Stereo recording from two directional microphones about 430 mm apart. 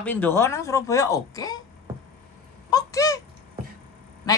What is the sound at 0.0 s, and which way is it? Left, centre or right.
Speech, centre.